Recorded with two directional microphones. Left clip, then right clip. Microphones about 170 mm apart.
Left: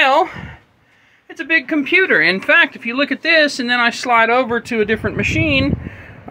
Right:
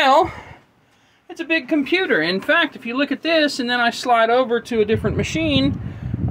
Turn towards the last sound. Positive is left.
turn(degrees=5)  # may be behind; listen again after turning